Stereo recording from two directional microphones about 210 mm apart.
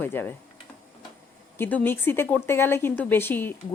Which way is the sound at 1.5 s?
10° left (ahead or behind).